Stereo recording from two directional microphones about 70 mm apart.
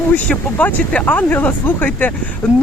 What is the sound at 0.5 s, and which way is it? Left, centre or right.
Speech, left.